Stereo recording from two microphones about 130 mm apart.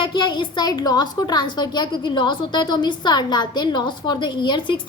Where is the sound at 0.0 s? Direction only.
35° left (ahead or behind).